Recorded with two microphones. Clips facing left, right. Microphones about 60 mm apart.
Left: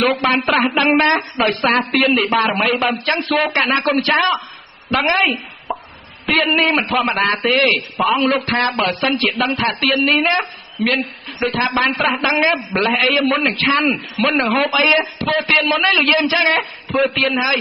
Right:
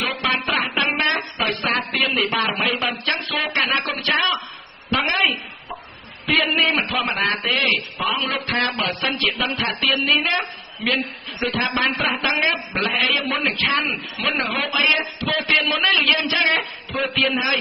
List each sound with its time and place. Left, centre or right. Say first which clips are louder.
0.0 s a man's voice: left 7 dB; left